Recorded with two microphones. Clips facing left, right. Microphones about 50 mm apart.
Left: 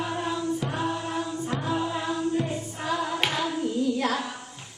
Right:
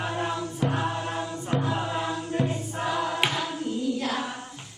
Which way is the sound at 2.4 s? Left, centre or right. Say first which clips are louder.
Right 2 dB; centre.